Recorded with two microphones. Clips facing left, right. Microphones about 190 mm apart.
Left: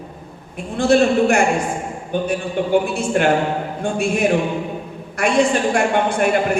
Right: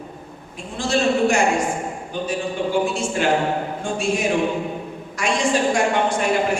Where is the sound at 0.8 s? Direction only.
60° left (ahead or behind).